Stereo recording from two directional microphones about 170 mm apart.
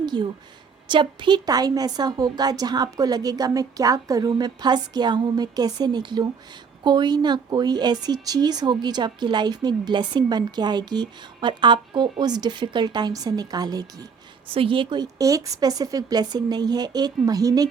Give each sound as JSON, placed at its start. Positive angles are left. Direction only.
{"t": 0.0, "sound": "a woman's voice", "side_deg": -25}